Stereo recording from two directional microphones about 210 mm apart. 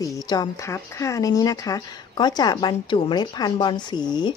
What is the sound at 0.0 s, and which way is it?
Speech, 15° left (ahead or behind).